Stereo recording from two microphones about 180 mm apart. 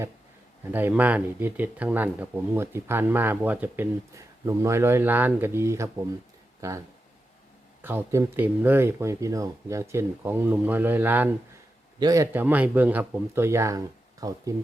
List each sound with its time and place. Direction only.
0.7 s speech: 10° right (ahead or behind)